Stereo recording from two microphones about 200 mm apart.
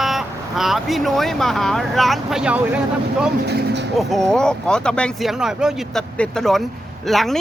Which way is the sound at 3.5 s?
60° right (ahead or behind).